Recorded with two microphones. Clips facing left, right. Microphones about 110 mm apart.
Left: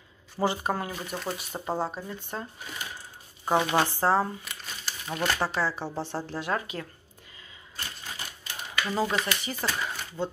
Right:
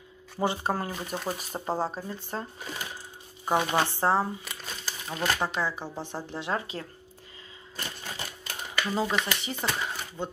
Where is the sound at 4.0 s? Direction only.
20° right (ahead or behind).